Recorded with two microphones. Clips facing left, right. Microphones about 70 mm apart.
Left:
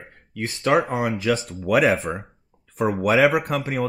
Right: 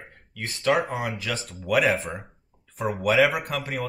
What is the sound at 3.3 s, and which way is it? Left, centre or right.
Speech, left.